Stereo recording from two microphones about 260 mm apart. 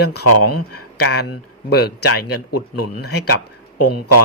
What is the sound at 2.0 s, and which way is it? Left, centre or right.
Speech, left.